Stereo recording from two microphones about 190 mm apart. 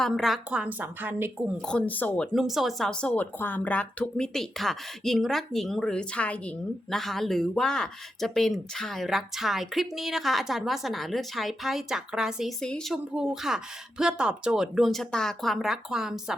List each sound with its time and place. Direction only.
0.0 s a woman's voice: centre (ahead or behind)
1.6 s speech: 5° left (ahead or behind)